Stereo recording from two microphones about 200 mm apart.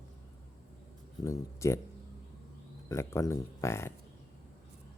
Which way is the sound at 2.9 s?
15° left (ahead or behind).